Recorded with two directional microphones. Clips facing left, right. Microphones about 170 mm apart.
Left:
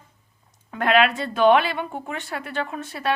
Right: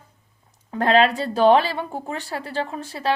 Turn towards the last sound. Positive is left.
turn(degrees=-30)  # may be behind; listen again after turning